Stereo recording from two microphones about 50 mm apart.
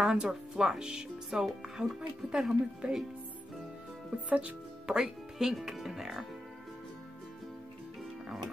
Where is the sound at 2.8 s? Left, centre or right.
Right.